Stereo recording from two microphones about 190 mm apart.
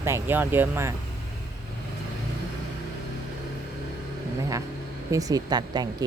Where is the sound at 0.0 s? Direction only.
10° right (ahead or behind).